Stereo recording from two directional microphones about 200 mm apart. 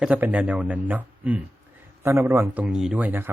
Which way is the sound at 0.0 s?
5° right (ahead or behind).